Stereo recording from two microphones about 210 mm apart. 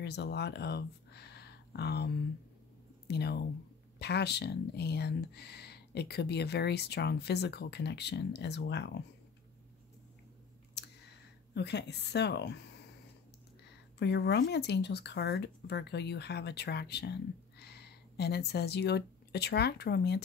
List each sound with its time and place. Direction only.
0.0 s speech: 50° left (ahead or behind)
11.5 s speech: 55° left (ahead or behind)
13.9 s speech: 55° left (ahead or behind)